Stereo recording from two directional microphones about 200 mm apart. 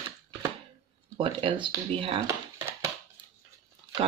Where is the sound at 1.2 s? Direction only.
25° right (ahead or behind).